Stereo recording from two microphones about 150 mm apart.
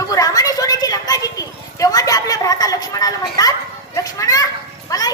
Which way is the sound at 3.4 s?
25° left (ahead or behind).